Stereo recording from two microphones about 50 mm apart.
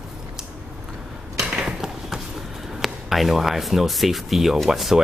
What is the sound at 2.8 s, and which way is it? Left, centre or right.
Speech, centre.